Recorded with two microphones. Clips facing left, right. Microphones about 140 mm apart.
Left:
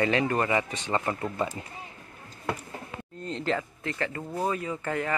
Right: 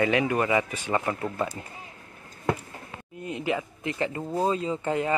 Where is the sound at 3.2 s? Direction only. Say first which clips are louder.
Right 1 dB; 10° right (ahead or behind).